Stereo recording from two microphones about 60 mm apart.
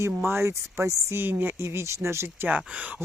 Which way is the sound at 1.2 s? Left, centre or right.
Right.